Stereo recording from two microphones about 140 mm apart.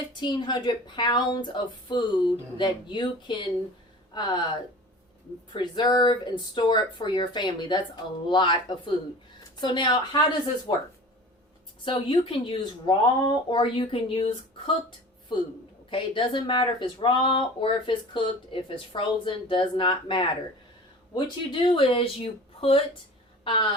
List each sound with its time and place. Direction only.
0.2 s speech: 30° left (ahead or behind)
11.9 s speech: 40° left (ahead or behind)
21.5 s a woman's voice: 40° left (ahead or behind)